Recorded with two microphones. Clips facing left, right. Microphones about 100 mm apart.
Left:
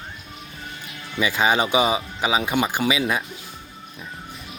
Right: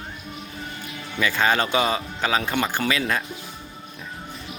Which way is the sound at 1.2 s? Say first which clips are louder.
Left 1 dB; 15° left (ahead or behind).